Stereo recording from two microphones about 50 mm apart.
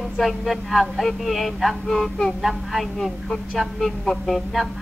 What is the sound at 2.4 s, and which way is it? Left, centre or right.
A woman's voice, centre.